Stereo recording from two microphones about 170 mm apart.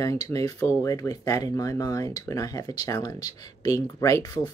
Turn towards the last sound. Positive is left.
turn(degrees=20)  # may be behind; listen again after turning